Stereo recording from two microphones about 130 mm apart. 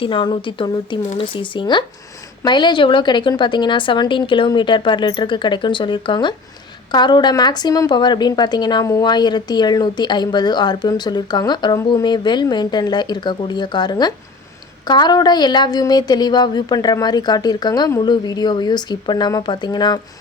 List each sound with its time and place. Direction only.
0.0 s speech: 40° left (ahead or behind)